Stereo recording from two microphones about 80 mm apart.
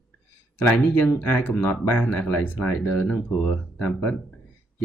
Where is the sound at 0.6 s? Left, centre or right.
Centre.